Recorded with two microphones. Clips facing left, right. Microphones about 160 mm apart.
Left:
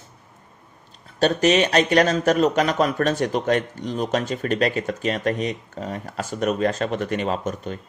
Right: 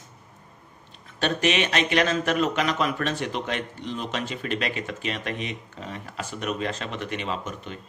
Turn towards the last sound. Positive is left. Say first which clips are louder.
# left 6 dB
turn(degrees=40)  # may be behind; listen again after turning